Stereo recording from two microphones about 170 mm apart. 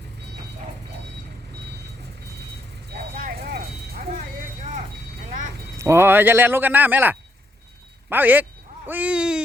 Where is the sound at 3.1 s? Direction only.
60° right (ahead or behind).